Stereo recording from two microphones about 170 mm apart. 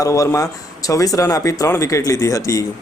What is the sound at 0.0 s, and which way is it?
Speech, 20° left (ahead or behind).